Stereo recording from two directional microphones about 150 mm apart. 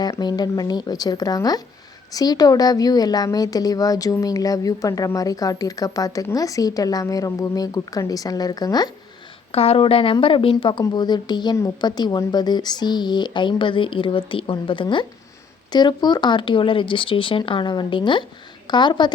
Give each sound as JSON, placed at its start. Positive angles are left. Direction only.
{"t": 0.0, "sound": "a woman's voice", "side_deg": 25}
{"t": 9.5, "sound": "a woman's voice", "side_deg": 40}